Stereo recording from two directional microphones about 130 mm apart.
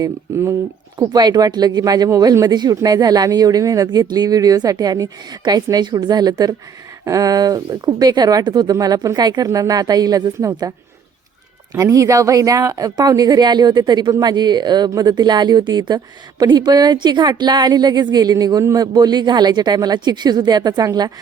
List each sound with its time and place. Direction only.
0.0 s a woman's voice: 25° right (ahead or behind)